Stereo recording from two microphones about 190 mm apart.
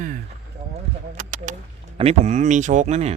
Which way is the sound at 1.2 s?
45° right (ahead or behind).